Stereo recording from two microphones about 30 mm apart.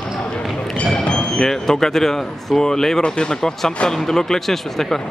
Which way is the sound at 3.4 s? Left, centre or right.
Centre.